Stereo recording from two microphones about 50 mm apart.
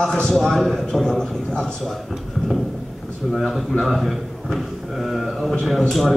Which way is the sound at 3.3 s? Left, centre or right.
Centre.